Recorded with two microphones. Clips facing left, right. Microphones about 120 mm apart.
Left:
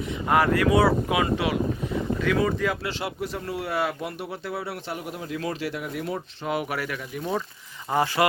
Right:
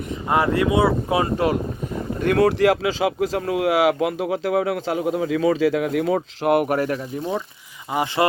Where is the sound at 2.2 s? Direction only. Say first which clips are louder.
Right 9 dB; 60° right (ahead or behind); by 7.2 s 35° right (ahead or behind).